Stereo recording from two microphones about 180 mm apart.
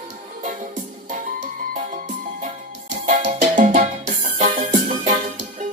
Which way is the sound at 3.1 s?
45° right (ahead or behind).